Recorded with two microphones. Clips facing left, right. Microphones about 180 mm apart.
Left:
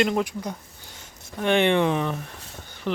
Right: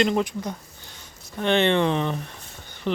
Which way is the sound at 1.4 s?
10° left (ahead or behind).